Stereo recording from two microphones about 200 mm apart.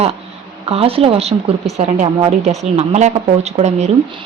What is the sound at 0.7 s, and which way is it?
A woman's voice, 30° right (ahead or behind).